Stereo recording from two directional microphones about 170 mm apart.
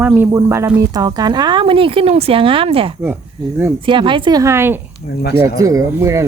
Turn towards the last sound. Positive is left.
turn(degrees=-15)  # may be behind; listen again after turning